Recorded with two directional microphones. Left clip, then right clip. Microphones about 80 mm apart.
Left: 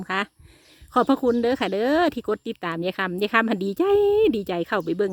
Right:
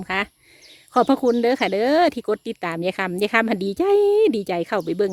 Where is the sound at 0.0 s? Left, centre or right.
Left.